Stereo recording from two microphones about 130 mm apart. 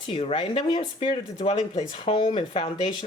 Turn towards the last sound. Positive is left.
turn(degrees=40)  # may be behind; listen again after turning